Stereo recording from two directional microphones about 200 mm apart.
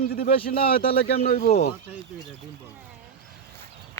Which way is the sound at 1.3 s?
50° left (ahead or behind).